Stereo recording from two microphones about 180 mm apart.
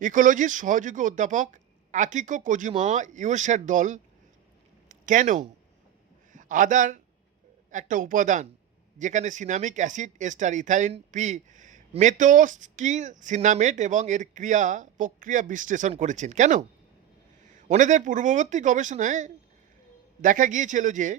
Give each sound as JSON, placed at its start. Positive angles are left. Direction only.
{"t": 0.0, "sound": "speech", "side_deg": -45}